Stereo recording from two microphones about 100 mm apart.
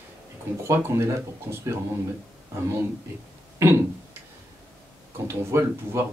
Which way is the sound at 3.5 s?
30° right (ahead or behind).